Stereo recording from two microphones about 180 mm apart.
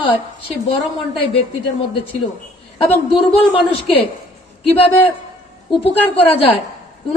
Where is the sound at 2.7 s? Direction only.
30° left (ahead or behind).